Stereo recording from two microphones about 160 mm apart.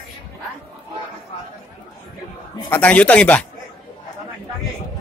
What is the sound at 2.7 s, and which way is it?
Speech, 10° left (ahead or behind).